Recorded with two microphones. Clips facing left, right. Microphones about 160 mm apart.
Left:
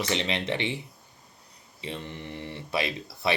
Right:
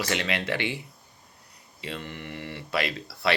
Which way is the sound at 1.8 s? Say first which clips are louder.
Even; 20° left (ahead or behind).